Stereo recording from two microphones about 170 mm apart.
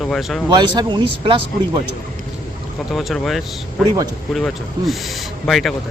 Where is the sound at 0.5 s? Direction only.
25° right (ahead or behind).